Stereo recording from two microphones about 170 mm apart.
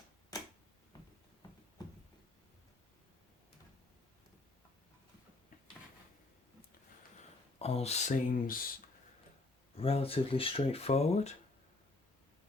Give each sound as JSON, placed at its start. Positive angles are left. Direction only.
{"t": 7.6, "sound": "speech", "side_deg": 35}
{"t": 9.7, "sound": "speech", "side_deg": 35}